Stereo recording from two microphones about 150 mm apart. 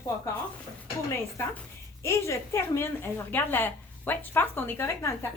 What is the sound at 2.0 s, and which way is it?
A woman's voice, 20° left (ahead or behind).